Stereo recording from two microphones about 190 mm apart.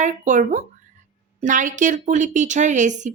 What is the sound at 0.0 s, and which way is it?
Speech, 40° right (ahead or behind).